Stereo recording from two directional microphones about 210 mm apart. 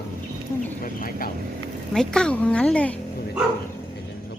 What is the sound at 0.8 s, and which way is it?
Speech, 45° left (ahead or behind).